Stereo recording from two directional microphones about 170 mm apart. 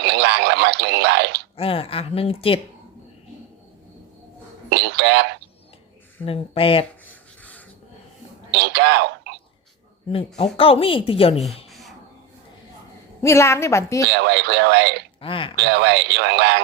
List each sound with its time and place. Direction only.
0.0 s speech: 85° right
1.5 s a woman's voice: 35° left (ahead or behind)
4.7 s speech: 80° right
6.2 s a woman's voice: 35° left (ahead or behind)
8.4 s speech: 80° right
10.1 s a woman's voice: 35° left (ahead or behind)
11.7 s a sound: centre (ahead or behind)
13.2 s a woman's voice: 15° left (ahead or behind)
14.1 s speech: 80° right
15.2 s a woman's voice: 30° left (ahead or behind)
15.5 s speech: 80° right